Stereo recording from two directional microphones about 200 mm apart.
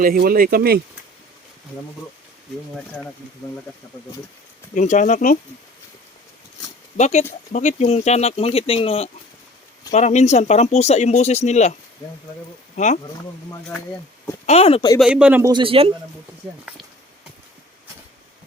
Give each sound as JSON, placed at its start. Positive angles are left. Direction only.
{"t": 0.0, "sound": "speech", "side_deg": -45}
{"t": 2.7, "sound": "speech", "side_deg": 5}
{"t": 4.7, "sound": "speech", "side_deg": 40}
{"t": 6.9, "sound": "speech", "side_deg": 35}
{"t": 12.7, "sound": "speech", "side_deg": 35}
{"t": 14.4, "sound": "speech", "side_deg": 30}
{"t": 14.9, "sound": "speech", "side_deg": -5}
{"t": 15.5, "sound": "speech", "side_deg": -25}